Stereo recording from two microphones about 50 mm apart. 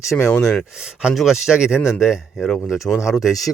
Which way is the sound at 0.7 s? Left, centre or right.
Centre.